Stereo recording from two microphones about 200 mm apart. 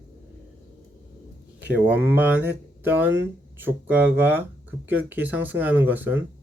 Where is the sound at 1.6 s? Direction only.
60° right (ahead or behind).